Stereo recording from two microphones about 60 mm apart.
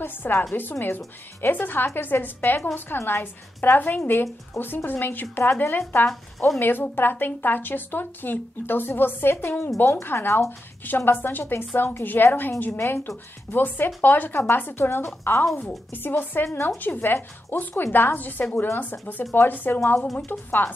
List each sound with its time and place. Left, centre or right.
0.0 s a woman's voice: left
20.0 s speech: centre
20.2 s a woman's voice: left